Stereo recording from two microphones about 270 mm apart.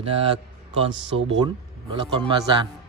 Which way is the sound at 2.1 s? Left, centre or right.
Centre.